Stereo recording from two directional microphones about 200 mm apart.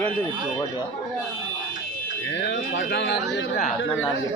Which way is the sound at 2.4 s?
65° left (ahead or behind).